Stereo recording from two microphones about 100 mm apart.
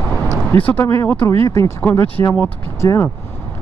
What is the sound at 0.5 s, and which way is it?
Speech, 15° left (ahead or behind).